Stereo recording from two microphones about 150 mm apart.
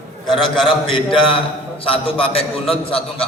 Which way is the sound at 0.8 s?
35° left (ahead or behind).